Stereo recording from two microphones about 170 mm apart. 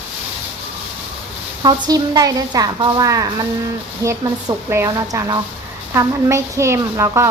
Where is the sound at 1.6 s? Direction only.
20° right (ahead or behind).